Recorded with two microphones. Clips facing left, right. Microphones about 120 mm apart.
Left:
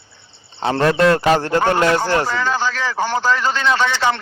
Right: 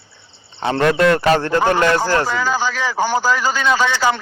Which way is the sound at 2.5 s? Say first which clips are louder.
Right 1 dB; 5° right (ahead or behind).